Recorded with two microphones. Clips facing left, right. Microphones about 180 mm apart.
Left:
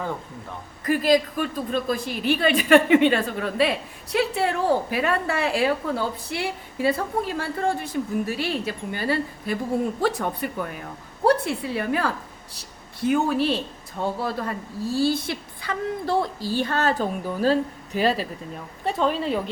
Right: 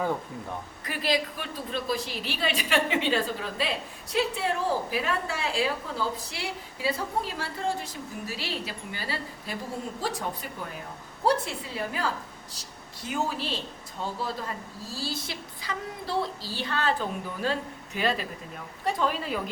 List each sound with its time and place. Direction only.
0.9 s a woman's voice: 45° left (ahead or behind); by 19.4 s 25° left (ahead or behind)